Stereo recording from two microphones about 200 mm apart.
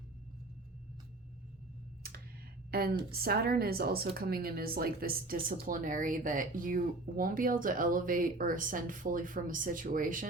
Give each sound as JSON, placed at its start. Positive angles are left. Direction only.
{"t": 2.7, "sound": "a woman's voice", "side_deg": -50}